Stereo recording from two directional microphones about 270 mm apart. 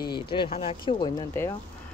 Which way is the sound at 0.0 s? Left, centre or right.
Centre.